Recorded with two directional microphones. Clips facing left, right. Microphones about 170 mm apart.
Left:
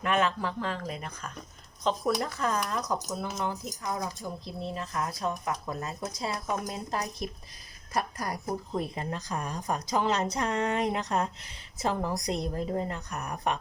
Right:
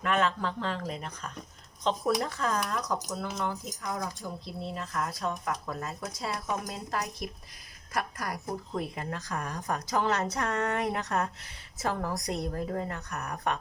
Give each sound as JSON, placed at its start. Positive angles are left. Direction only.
{"t": 0.0, "sound": "a woman's voice", "side_deg": 15}